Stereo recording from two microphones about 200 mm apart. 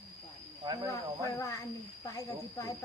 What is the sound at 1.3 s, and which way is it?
Speech, 15° left (ahead or behind).